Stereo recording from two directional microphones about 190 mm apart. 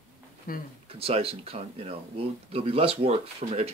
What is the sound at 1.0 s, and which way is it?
Speech, 30° right (ahead or behind).